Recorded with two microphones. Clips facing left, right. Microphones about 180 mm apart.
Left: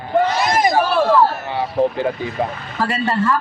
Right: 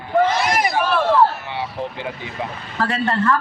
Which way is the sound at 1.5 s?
40° left (ahead or behind).